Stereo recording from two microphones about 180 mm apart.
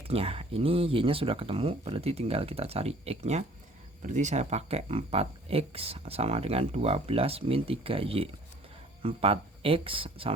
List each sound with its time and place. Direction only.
0.1 s speech: 30° right (ahead or behind)